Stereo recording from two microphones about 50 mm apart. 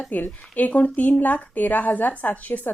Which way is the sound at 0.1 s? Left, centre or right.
Left.